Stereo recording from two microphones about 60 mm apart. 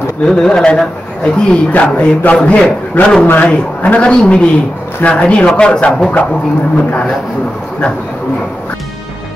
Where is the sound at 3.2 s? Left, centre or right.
Left.